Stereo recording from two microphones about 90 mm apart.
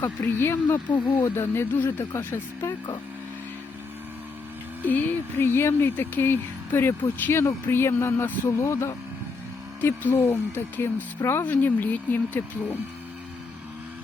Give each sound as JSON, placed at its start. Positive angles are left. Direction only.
{"t": 0.0, "sound": "speech", "side_deg": 25}
{"t": 4.9, "sound": "speech", "side_deg": 20}